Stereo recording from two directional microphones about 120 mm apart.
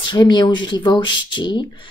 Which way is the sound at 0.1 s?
35° left (ahead or behind).